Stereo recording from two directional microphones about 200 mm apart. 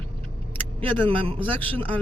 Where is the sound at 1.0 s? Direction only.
25° right (ahead or behind).